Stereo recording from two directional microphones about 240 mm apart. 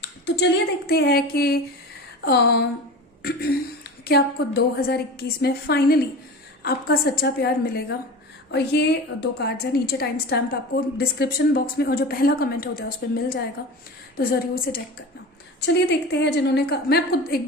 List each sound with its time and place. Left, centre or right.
0.0 s a woman's voice: left
4.0 s a woman's voice: left